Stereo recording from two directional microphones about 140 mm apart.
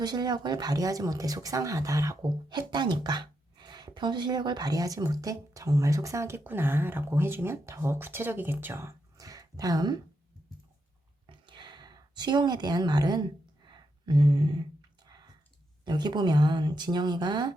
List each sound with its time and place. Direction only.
0.0 s speech: 30° right (ahead or behind)
11.3 s a sound: 35° right (ahead or behind)
15.8 s speech: 30° right (ahead or behind)